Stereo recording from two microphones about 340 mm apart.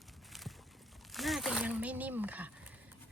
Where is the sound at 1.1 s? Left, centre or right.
Centre.